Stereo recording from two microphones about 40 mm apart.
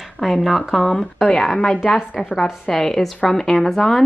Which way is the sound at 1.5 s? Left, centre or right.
Left.